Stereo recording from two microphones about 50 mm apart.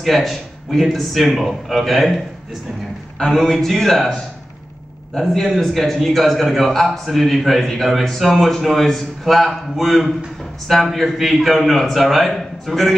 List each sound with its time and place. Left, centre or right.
0.0 s a man's voice: centre
3.4 s a man's voice: centre